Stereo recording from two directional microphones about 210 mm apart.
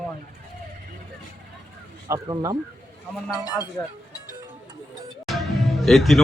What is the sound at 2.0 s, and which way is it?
Speech, 20° right (ahead or behind).